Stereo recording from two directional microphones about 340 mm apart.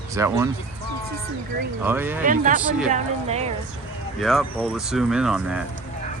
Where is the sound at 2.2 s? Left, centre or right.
Right.